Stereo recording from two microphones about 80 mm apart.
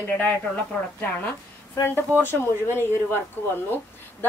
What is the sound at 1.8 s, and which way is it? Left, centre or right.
Speech, left.